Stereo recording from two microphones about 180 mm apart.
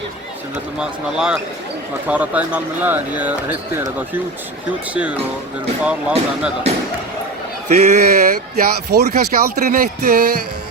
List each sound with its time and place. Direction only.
0.8 s speech: 5° right (ahead or behind)
5.8 s speech: 5° right (ahead or behind)
7.7 s speech: 45° right (ahead or behind)